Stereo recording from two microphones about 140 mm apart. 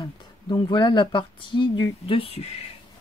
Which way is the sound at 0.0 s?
30° left (ahead or behind).